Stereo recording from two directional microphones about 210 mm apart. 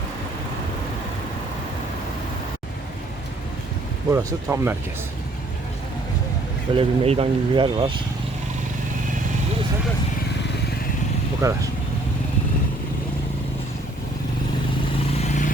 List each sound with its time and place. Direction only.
4.1 s speech: 15° right (ahead or behind)
6.7 s speech: 25° right (ahead or behind)
11.3 s speech: 15° right (ahead or behind)
15.2 s vehicle: 35° left (ahead or behind)